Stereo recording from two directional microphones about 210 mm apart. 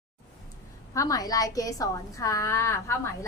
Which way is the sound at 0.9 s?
15° left (ahead or behind).